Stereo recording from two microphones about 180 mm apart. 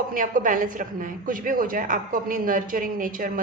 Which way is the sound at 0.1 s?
50° right (ahead or behind).